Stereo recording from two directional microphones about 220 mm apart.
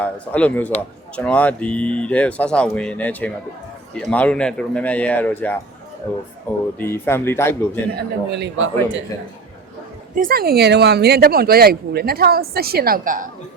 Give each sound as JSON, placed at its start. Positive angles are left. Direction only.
{"t": 0.0, "sound": "speech", "side_deg": 5}
{"t": 6.7, "sound": "speech", "side_deg": 10}
{"t": 7.9, "sound": "a man's voice", "side_deg": -50}
{"t": 10.2, "sound": "speech", "side_deg": -40}